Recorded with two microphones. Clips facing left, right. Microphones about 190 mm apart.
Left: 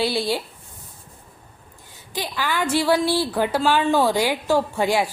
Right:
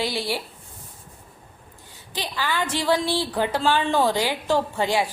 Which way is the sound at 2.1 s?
15° left (ahead or behind).